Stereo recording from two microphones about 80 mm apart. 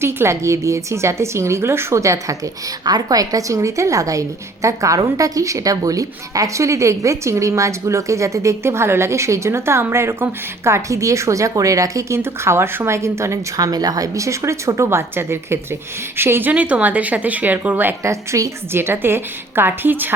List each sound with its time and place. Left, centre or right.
0.0 s a woman's voice: right
16.5 s a woman's voice: centre
18.0 s a woman's voice: right
18.7 s a woman's voice: right